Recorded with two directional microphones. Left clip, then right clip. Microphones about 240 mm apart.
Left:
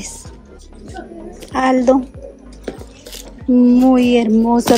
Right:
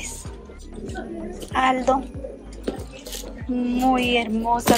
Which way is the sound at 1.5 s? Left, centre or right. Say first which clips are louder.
Left 6 dB; left.